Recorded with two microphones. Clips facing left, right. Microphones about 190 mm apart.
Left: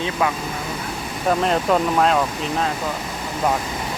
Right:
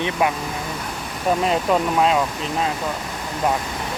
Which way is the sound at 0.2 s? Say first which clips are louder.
Right 1 dB; 20° right (ahead or behind).